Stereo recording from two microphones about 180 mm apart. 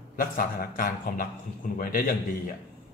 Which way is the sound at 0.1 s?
50° left (ahead or behind).